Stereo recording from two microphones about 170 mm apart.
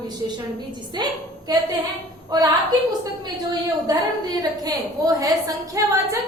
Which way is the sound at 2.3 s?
25° right (ahead or behind).